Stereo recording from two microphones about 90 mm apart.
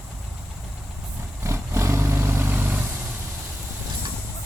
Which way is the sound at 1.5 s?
30° right (ahead or behind).